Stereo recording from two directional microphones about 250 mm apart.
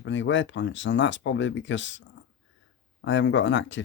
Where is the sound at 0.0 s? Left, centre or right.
Left.